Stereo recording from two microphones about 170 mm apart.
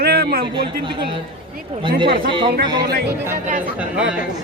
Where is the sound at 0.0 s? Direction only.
70° right (ahead or behind).